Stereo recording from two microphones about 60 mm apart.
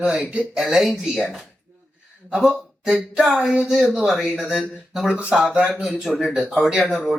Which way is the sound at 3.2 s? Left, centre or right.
Centre.